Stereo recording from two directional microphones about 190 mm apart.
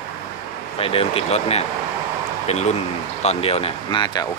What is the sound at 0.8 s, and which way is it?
Speech, 30° left (ahead or behind).